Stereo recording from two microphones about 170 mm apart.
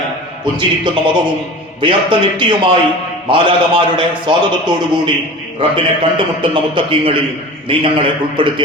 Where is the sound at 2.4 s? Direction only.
30° right (ahead or behind).